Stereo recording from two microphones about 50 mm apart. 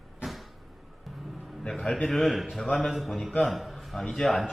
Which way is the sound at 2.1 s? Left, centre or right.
Centre.